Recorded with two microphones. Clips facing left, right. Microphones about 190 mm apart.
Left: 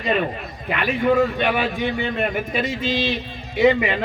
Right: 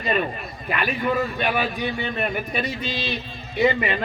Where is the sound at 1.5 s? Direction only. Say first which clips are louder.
Left 2 dB; 80° left.